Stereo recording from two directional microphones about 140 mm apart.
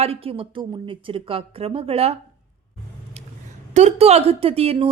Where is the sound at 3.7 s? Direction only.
50° right (ahead or behind).